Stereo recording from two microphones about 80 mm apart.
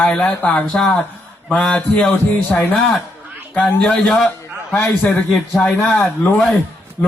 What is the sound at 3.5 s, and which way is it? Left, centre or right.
A man's voice, centre.